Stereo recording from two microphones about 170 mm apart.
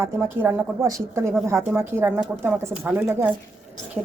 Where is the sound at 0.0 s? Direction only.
15° right (ahead or behind).